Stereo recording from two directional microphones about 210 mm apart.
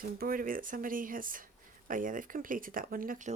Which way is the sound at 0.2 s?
40° right (ahead or behind).